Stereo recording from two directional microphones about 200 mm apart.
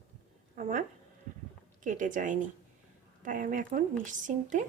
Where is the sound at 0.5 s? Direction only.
40° right (ahead or behind).